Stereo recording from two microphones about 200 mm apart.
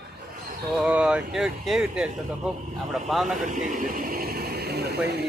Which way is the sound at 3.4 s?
40° right (ahead or behind).